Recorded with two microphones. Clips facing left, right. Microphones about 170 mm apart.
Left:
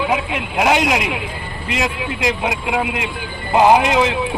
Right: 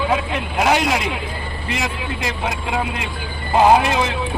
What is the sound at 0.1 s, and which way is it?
Speech, 15° left (ahead or behind).